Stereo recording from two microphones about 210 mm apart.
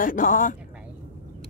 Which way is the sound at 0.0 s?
40° left (ahead or behind).